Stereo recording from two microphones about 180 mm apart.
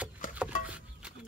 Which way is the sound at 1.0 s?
5° right (ahead or behind).